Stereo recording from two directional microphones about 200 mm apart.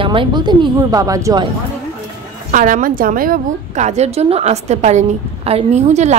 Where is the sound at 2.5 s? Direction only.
40° right (ahead or behind).